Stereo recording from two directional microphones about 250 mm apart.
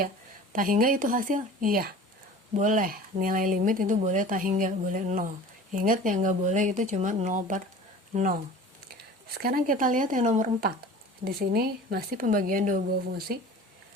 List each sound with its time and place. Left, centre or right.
0.5 s speech: right